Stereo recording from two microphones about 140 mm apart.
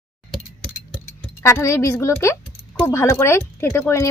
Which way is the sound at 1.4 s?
20° left (ahead or behind).